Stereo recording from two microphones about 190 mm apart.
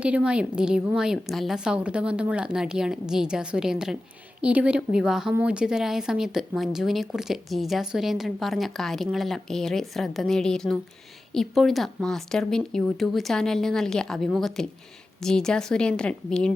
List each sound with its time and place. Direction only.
0.0 s speech: 5° right (ahead or behind)